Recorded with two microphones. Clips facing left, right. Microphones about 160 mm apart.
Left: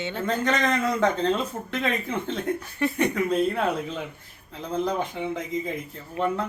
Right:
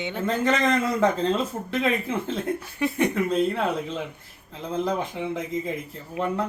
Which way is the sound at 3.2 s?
Centre (ahead or behind).